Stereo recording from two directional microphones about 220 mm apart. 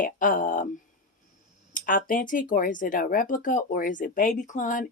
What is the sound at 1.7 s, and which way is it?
Speech, 40° left (ahead or behind).